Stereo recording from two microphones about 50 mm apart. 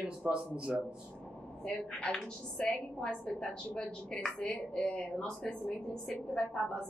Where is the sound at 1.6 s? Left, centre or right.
Centre.